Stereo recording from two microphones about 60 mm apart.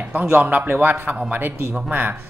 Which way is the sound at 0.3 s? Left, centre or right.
Right.